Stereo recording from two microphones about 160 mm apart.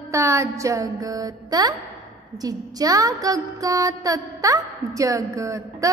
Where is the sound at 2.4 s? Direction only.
25° right (ahead or behind).